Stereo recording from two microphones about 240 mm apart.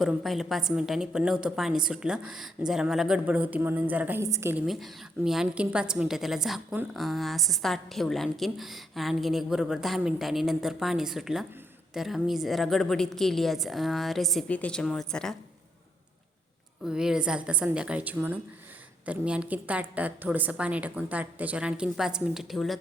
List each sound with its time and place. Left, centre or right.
0.0 s a woman's voice: centre
16.8 s a woman's voice: centre